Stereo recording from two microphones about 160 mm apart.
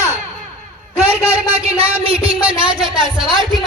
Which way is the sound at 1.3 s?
35° right (ahead or behind).